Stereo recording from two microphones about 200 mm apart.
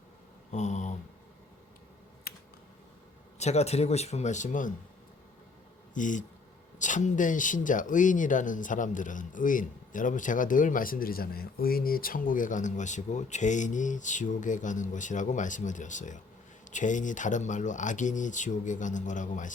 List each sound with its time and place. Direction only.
0.5 s a sound: 35° left (ahead or behind)
2.3 s computer keyboard: 50° left (ahead or behind)
3.3 s speech: 35° left (ahead or behind)
5.9 s speech: 40° left (ahead or behind)